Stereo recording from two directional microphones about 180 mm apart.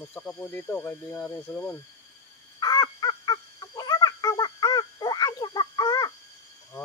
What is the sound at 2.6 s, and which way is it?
Crow, 20° left (ahead or behind).